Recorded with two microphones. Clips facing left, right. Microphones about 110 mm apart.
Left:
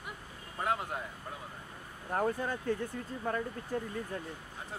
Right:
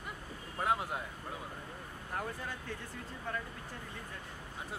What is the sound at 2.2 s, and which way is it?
Speech, 45° left (ahead or behind).